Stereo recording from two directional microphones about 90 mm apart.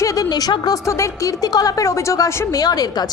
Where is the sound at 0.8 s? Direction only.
35° left (ahead or behind).